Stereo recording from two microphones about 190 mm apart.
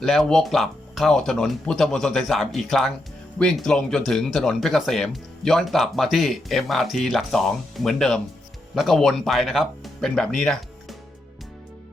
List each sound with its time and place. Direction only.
0.0 s speech: centre (ahead or behind)